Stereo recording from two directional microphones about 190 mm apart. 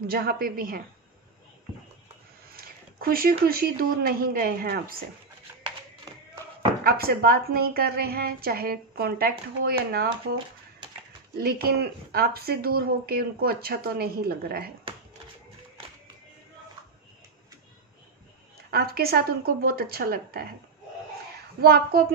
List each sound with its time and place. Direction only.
0.0 s speech: 50° right (ahead or behind)
2.4 s speech: 50° right (ahead or behind)
6.8 s speech: 50° right (ahead or behind)
11.3 s speech: 55° right (ahead or behind)
18.7 s speech: 55° right (ahead or behind)
21.5 s speech: 55° right (ahead or behind)